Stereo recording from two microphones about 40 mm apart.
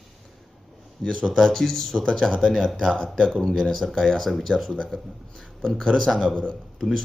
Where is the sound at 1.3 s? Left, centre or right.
Centre.